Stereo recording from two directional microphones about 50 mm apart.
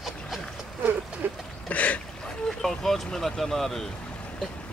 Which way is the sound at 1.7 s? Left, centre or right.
Left.